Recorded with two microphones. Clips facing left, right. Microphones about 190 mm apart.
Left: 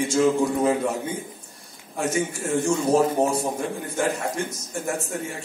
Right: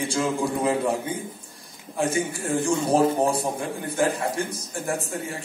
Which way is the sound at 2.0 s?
30° right (ahead or behind).